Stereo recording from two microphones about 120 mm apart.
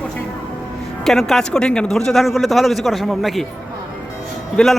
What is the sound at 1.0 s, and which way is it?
Speech, 5° left (ahead or behind).